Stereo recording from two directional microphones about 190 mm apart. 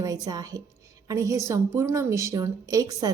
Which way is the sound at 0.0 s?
20° right (ahead or behind).